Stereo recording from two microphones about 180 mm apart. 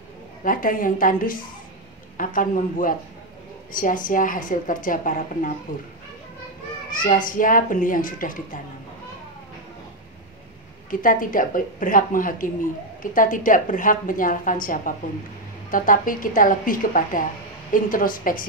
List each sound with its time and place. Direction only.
0.4 s a woman's voice: 50° left (ahead or behind)
7.0 s a woman's voice: 50° left (ahead or behind)
10.9 s a woman's voice: 50° left (ahead or behind)